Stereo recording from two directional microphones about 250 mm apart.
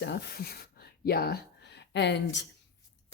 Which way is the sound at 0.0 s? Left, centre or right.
Left.